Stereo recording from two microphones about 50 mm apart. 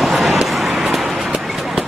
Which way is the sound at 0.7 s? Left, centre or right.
Centre.